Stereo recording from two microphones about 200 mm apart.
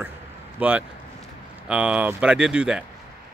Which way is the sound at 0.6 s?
5° right (ahead or behind).